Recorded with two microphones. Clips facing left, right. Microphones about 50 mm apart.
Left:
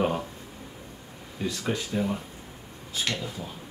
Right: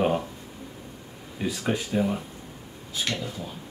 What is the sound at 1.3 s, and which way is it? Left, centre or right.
Speech, centre.